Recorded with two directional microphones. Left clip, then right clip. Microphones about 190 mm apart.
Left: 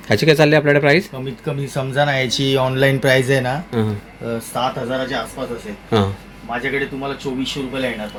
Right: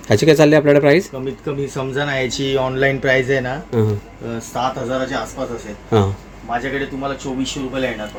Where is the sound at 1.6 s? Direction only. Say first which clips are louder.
Left 4 dB; 35° left (ahead or behind).